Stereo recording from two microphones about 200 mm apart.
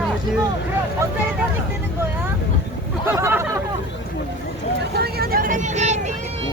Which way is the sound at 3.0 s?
10° right (ahead or behind).